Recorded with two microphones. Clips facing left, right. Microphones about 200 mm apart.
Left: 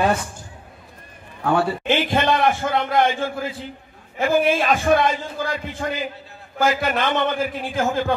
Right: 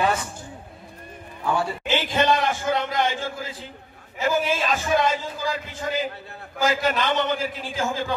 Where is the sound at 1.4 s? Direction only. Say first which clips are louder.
Left 5 dB; 60° left (ahead or behind).